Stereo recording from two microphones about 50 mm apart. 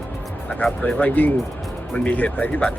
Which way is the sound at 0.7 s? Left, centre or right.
Centre.